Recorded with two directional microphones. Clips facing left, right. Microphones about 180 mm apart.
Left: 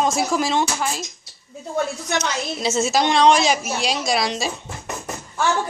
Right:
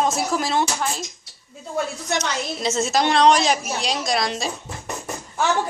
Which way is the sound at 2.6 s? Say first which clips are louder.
Left 1 dB; 5° left (ahead or behind).